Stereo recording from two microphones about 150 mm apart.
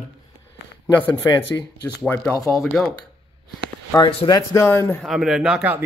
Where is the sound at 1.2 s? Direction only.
25° left (ahead or behind).